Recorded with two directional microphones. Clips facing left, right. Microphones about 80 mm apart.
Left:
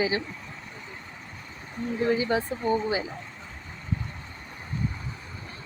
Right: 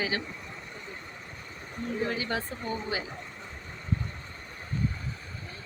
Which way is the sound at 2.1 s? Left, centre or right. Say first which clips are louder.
Left 6 dB; centre.